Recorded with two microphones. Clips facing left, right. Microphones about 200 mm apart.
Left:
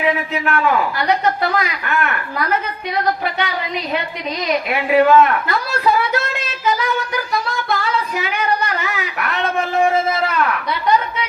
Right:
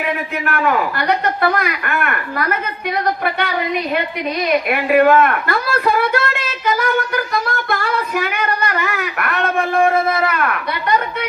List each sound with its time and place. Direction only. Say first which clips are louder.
0.4 s speech: even; 55° right (ahead or behind)
4.7 s speech: even; 55° right (ahead or behind)
6.7 s music: right 3 dB; 55° right (ahead or behind)